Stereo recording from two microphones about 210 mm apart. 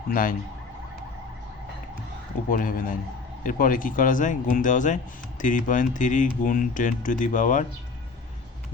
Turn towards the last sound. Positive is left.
turn(degrees=35)  # may be behind; listen again after turning